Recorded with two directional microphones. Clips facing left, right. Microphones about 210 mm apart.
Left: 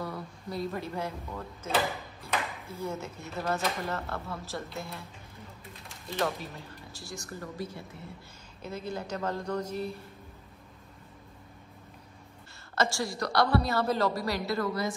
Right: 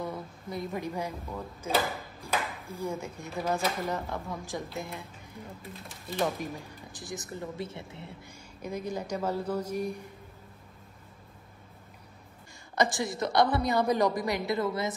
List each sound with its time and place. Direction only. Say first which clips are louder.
0.0 s speech: right 1 dB; 20° right (ahead or behind)
6.1 s speech: right 1 dB; 15° right (ahead or behind)
8.6 s speech: right 2 dB; 10° right (ahead or behind)
12.7 s speech: right 2 dB; 15° right (ahead or behind)